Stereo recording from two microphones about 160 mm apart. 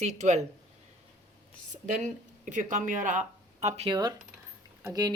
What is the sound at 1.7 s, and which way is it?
Speech, 50° right (ahead or behind).